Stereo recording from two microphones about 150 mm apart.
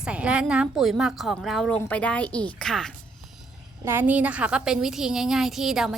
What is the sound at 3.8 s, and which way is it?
A woman's voice, 15° right (ahead or behind).